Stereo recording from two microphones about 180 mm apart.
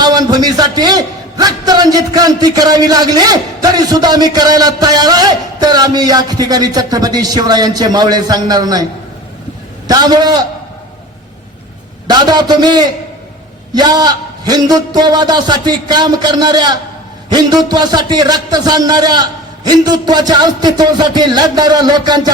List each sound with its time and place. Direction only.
0.0 s a man's voice: 20° right (ahead or behind)
9.8 s a man's voice: 20° right (ahead or behind)
12.0 s a man's voice: 25° right (ahead or behind)